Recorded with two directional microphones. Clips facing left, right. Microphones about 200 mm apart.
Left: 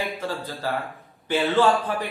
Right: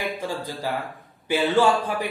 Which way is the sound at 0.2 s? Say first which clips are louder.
Right 1 dB; 15° right (ahead or behind).